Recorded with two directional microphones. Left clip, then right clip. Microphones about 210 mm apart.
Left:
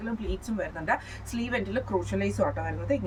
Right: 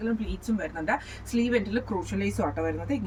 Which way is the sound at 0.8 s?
15° left (ahead or behind).